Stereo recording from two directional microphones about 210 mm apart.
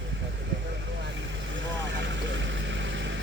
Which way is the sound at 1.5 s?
60° right (ahead or behind).